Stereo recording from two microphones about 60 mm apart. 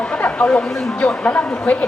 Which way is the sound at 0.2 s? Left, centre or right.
Left.